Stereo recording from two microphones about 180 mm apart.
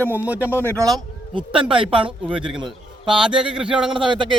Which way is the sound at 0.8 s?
20° right (ahead or behind).